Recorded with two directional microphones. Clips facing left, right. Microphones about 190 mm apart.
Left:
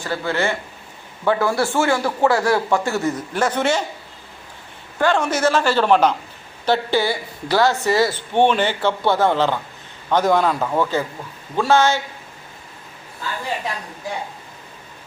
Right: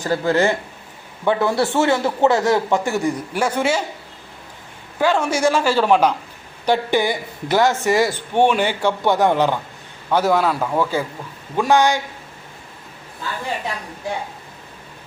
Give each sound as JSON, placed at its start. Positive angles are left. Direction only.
{"t": 0.0, "sound": "speech", "side_deg": -40}
{"t": 1.2, "sound": "a man's voice", "side_deg": -20}
{"t": 4.9, "sound": "a man's voice", "side_deg": -10}